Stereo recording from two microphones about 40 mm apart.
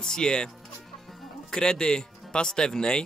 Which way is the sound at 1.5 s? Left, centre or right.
Centre.